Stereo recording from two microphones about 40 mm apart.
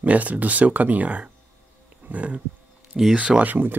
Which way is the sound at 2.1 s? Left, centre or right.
Right.